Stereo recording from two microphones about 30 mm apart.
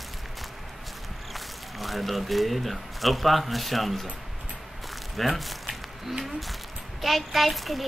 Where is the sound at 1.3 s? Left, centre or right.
Centre.